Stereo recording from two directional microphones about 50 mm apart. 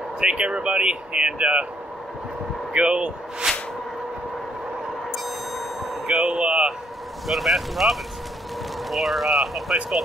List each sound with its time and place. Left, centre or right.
0.2 s speech: right
2.7 s speech: right
5.1 s music: centre
6.0 s speech: right
7.2 s speech: centre